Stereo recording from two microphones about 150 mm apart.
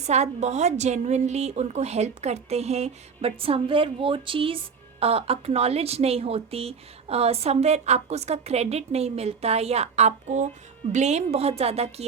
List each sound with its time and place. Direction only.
0.1 s a woman's voice: 50° right (ahead or behind)